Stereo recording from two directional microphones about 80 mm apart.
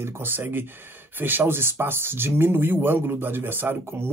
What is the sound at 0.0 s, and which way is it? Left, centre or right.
Speech, right.